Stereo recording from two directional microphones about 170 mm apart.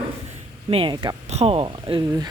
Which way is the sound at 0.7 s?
30° right (ahead or behind).